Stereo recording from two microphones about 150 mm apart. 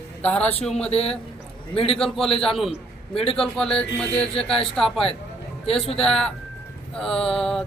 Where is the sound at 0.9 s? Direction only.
40° left (ahead or behind).